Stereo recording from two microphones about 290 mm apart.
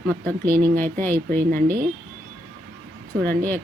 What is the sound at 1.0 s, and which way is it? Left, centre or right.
Speech, centre.